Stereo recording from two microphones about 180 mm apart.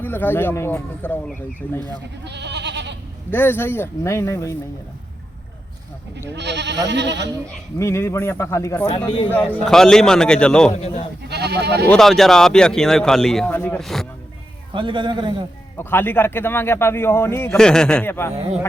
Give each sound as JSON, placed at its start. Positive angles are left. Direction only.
{"t": 0.0, "sound": "a man's voice", "side_deg": 10}
{"t": 2.2, "sound": "goat", "side_deg": -70}
{"t": 3.3, "sound": "a man's voice", "side_deg": 10}
{"t": 6.3, "sound": "goat", "side_deg": -75}
{"t": 7.8, "sound": "a man's voice", "side_deg": 15}
{"t": 10.7, "sound": "speech", "side_deg": 35}
{"t": 11.2, "sound": "goat", "side_deg": -65}
{"t": 11.9, "sound": "a man's voice", "side_deg": 0}
{"t": 14.7, "sound": "a man's voice", "side_deg": -25}
{"t": 15.8, "sound": "a man's voice", "side_deg": 10}